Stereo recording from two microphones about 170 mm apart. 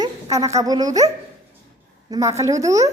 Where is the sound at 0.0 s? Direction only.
20° right (ahead or behind).